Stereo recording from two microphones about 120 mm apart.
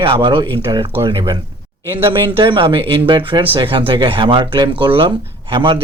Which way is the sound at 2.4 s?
45° right (ahead or behind).